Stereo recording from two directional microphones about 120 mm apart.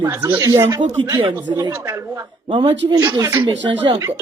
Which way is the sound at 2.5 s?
40° right (ahead or behind).